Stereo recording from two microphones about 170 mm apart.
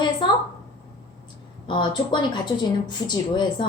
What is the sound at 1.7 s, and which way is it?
A woman's voice, 30° left (ahead or behind).